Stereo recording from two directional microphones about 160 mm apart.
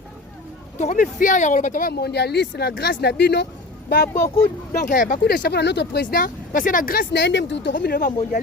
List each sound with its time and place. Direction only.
0.8 s speech: 50° left (ahead or behind)
1.9 s speech: 90° left
4.1 s speech: 15° left (ahead or behind)
4.7 s speech: 55° left (ahead or behind)
5.2 s speech: 85° left